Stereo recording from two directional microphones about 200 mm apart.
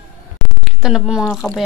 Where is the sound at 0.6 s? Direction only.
5° right (ahead or behind).